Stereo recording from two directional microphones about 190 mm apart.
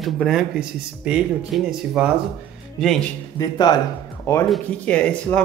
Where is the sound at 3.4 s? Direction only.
20° left (ahead or behind).